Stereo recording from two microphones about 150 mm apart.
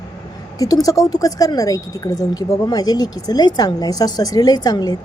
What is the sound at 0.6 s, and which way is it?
Speech, 25° left (ahead or behind).